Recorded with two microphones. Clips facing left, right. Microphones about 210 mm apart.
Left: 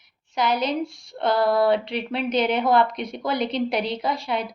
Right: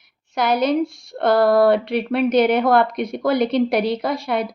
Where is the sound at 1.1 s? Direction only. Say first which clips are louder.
Right 5 dB; 65° right (ahead or behind).